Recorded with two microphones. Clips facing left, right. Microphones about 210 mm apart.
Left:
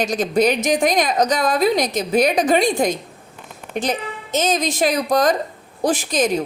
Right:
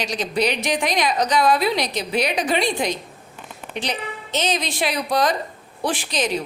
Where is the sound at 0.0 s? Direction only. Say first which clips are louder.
Left 5 dB; 50° left (ahead or behind).